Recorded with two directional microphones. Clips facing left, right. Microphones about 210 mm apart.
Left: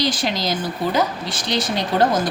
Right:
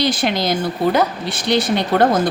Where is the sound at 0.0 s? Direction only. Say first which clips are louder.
Right 3 dB; 60° right (ahead or behind).